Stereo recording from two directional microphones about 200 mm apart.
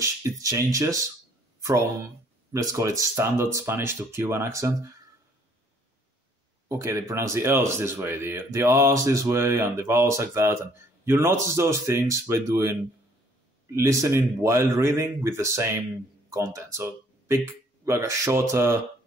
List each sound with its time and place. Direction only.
0.0 s speech: 15° right (ahead or behind)
6.7 s speech: 15° right (ahead or behind)